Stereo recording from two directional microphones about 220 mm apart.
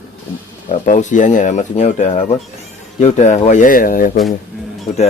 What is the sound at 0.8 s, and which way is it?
Speech, 35° left (ahead or behind).